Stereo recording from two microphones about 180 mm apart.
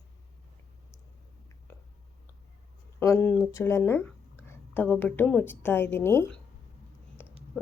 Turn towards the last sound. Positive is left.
turn(degrees=10)  # may be behind; listen again after turning